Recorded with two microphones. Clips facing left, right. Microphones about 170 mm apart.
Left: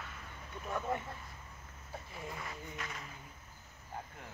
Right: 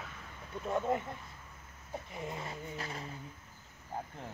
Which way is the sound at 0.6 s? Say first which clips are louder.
Right 5 dB; 25° right (ahead or behind).